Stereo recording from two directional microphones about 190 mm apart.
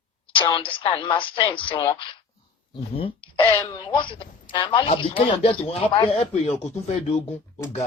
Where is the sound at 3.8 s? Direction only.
25° left (ahead or behind).